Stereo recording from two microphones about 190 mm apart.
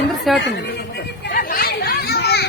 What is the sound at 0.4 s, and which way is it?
Chatter, 60° left (ahead or behind).